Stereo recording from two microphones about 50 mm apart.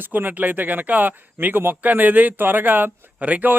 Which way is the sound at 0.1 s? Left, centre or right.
Right.